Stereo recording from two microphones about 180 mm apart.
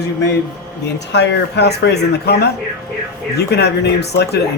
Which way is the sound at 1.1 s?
70° left (ahead or behind).